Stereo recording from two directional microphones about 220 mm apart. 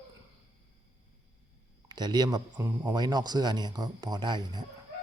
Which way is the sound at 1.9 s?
20° right (ahead or behind).